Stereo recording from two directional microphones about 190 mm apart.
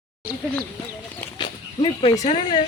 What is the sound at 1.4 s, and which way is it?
Dog, 30° left (ahead or behind).